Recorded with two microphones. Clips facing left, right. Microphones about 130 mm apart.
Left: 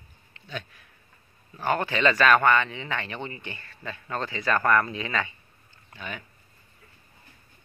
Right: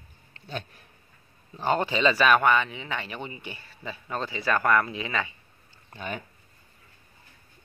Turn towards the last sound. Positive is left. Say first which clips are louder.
# right 3 dB
turn(degrees=-40)  # may be behind; listen again after turning